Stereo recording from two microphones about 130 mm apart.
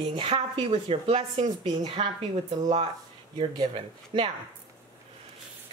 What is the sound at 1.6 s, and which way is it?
A woman's voice, 35° right (ahead or behind).